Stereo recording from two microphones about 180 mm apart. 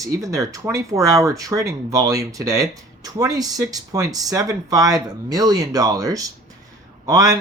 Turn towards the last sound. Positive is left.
turn(degrees=-20)  # may be behind; listen again after turning